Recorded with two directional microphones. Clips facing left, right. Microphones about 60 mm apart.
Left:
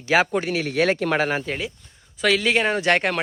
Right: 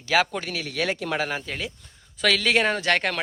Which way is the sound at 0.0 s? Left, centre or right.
Left.